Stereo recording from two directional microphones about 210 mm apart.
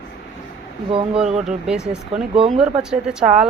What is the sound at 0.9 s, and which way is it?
Speech, 25° right (ahead or behind).